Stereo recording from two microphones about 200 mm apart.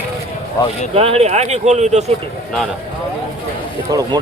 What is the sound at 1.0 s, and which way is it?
Speech, 30° right (ahead or behind).